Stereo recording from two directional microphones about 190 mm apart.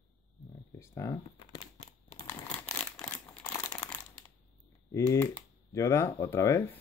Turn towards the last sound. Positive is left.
turn(degrees=15)  # may be behind; listen again after turning